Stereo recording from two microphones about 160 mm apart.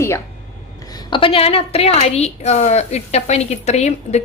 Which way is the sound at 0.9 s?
25° left (ahead or behind).